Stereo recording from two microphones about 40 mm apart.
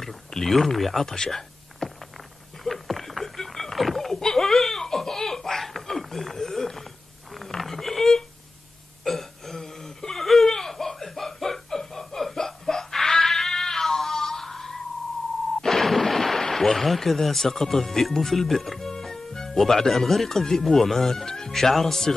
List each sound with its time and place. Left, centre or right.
0.3 s speech: centre
1.0 s speech: centre
1.8 s a sound: centre
4.1 s laughter: centre
7.3 s a sound: centre
10.2 s snicker: centre
15.6 s artillery fire: centre
19.7 s speech: centre